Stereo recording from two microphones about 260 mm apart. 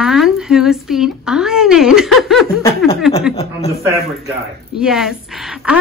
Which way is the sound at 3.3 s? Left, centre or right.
Left.